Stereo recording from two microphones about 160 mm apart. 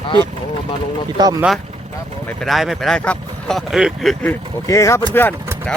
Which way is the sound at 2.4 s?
Centre (ahead or behind).